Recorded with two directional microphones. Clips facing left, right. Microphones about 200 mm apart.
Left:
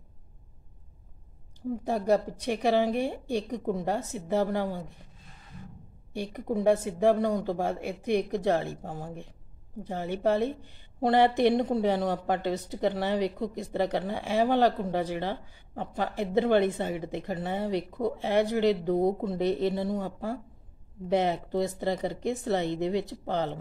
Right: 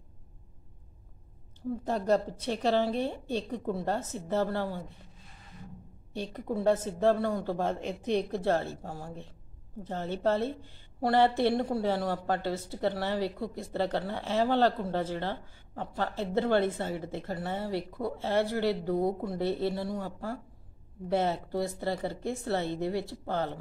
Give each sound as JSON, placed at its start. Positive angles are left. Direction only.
{"t": 1.7, "sound": "a woman's voice", "side_deg": 10}
{"t": 6.1, "sound": "a woman's voice", "side_deg": 10}